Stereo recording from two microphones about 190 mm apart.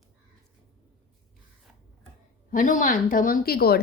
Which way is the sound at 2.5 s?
45° left (ahead or behind).